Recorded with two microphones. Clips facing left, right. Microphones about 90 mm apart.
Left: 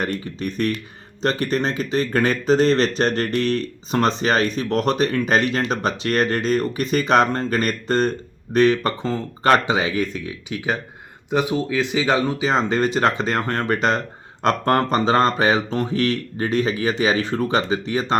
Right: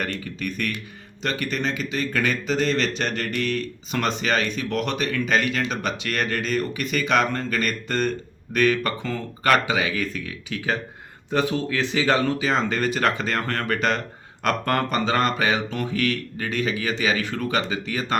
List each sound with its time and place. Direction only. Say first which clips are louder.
0.2 s speech: left 5 dB; 30° left (ahead or behind)